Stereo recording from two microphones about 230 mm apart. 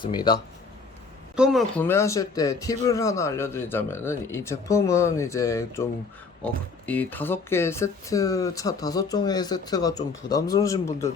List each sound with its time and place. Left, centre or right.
0.0 s speech: centre
1.4 s speech: centre